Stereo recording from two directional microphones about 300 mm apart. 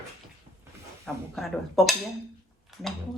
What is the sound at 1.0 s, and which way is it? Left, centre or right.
Speech, centre.